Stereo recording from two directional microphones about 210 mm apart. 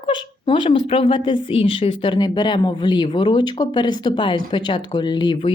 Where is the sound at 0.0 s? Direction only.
25° left (ahead or behind).